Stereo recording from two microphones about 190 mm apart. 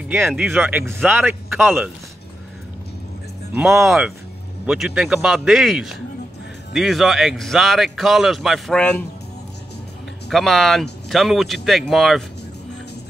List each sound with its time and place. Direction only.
0.1 s speech: 10° right (ahead or behind)
3.8 s speech: centre (ahead or behind)
10.3 s speech: centre (ahead or behind)